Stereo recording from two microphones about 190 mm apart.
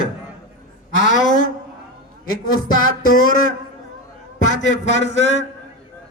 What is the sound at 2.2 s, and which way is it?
Speech, 50° left (ahead or behind).